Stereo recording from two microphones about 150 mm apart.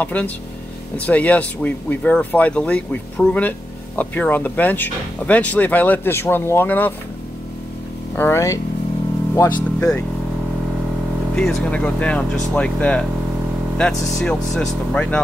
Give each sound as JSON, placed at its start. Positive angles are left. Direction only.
{"t": 0.0, "sound": "speech", "side_deg": 10}
{"t": 8.2, "sound": "speech", "side_deg": 20}
{"t": 11.3, "sound": "speech", "side_deg": 5}
{"t": 14.1, "sound": "speech", "side_deg": 0}